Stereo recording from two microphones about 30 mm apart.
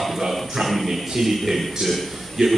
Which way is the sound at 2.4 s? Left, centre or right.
Right.